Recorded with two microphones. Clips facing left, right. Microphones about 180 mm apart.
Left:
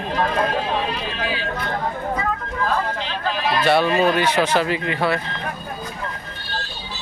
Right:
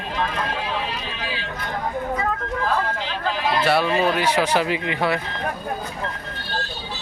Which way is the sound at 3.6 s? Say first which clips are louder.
Left 3 dB; 5° right (ahead or behind).